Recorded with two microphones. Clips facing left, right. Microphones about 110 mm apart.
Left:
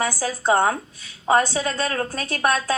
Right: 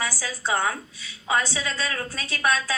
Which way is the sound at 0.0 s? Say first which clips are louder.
Left 7 dB; 45° left (ahead or behind).